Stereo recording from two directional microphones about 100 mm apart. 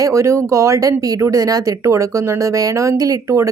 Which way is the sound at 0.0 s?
30° right (ahead or behind).